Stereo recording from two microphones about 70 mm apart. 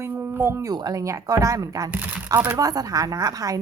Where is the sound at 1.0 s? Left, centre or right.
Right.